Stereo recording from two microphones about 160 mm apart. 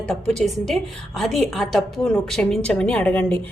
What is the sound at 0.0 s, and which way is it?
A woman's voice, 5° left (ahead or behind).